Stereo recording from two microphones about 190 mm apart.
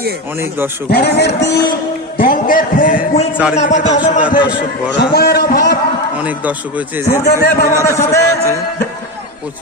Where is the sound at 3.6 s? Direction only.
40° left (ahead or behind).